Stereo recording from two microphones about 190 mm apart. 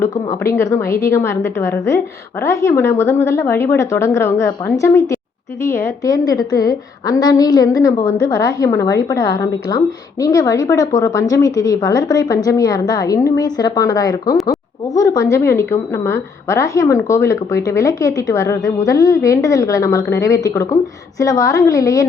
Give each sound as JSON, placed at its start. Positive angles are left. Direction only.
{"t": 0.0, "sound": "a woman's voice", "side_deg": 15}